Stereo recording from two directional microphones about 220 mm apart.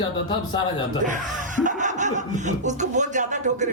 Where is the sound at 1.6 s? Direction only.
35° right (ahead or behind).